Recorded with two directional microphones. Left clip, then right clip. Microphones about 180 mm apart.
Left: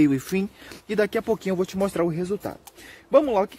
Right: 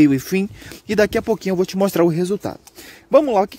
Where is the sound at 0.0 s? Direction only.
40° right (ahead or behind).